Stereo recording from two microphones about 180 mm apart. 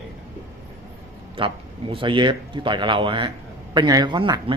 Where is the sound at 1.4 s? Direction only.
30° right (ahead or behind).